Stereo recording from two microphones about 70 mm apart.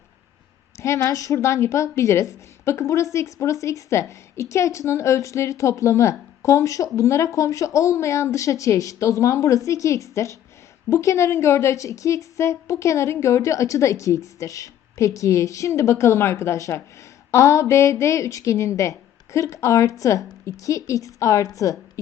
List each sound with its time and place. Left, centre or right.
0.8 s a woman's voice: left